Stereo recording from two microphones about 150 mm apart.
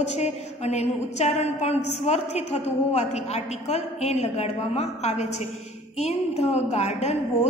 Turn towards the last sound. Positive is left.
turn(degrees=45)  # may be behind; listen again after turning